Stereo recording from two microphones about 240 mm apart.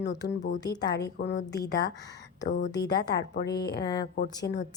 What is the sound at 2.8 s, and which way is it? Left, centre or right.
Speech, left.